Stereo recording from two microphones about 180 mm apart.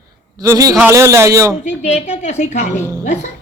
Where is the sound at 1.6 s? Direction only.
40° left (ahead or behind).